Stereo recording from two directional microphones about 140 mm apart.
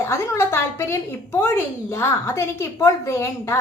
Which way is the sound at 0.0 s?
20° left (ahead or behind).